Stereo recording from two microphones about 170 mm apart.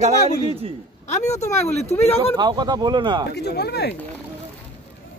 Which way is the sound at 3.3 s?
75° left (ahead or behind).